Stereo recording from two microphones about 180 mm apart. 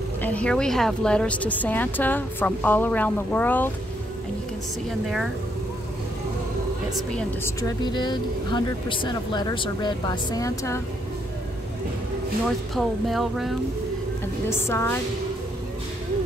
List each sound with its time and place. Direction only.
0.2 s a woman's voice: 5° left (ahead or behind)
5.0 s speech: centre (ahead or behind)
7.2 s a woman's voice: 15° left (ahead or behind)
7.8 s speech: 25° left (ahead or behind)
12.4 s speech: centre (ahead or behind)
14.5 s a woman's voice: 15° left (ahead or behind)